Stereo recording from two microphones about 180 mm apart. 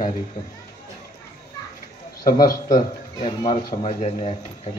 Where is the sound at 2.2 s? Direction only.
55° left (ahead or behind).